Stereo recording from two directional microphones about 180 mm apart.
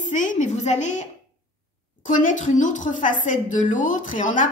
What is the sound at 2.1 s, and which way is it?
A woman's voice, 45° left (ahead or behind).